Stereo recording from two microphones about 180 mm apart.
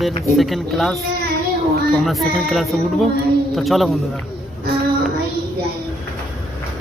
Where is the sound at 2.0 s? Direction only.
Centre (ahead or behind).